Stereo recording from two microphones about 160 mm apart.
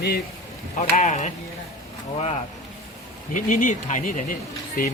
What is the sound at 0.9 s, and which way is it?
Speech, 50° left (ahead or behind).